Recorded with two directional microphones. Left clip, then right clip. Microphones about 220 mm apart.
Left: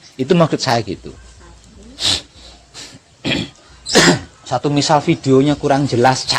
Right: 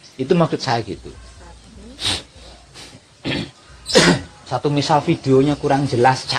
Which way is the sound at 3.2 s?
50° left (ahead or behind).